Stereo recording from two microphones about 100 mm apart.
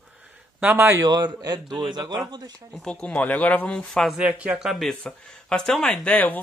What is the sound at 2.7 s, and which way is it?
Speech, 10° left (ahead or behind).